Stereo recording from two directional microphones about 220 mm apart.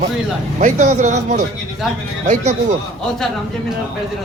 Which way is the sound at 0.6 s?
30° right (ahead or behind).